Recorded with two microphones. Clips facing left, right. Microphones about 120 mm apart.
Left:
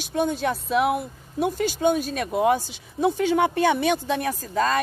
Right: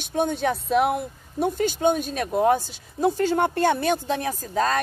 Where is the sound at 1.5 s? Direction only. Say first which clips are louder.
Right 1 dB; 50° right (ahead or behind).